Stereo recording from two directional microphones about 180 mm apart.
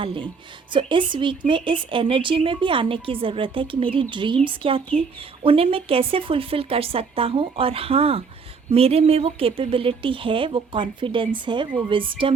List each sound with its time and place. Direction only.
0.0 s speech: 30° right (ahead or behind)